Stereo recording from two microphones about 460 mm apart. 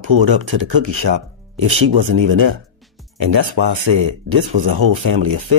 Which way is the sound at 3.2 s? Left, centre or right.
Right.